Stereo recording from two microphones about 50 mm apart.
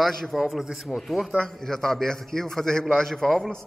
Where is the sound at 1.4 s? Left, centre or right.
Centre.